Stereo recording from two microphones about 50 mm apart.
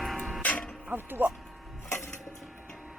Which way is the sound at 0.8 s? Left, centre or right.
Right.